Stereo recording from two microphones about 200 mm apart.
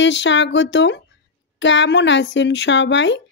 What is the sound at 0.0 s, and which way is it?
Speech, 65° left (ahead or behind).